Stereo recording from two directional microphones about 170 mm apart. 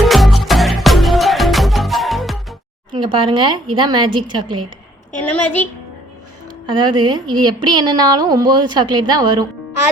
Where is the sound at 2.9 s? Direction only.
30° right (ahead or behind).